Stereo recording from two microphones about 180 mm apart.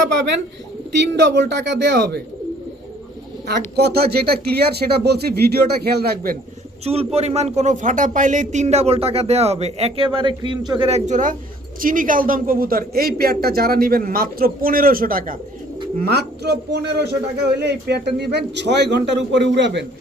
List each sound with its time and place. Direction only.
0.9 s speech: 70° right (ahead or behind)
3.8 s speech: 60° right (ahead or behind)
6.8 s a man's voice: 35° right (ahead or behind); by 19.8 s 80° right